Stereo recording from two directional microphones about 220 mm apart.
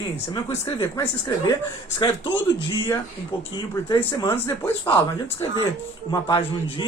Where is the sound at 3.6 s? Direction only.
20° left (ahead or behind).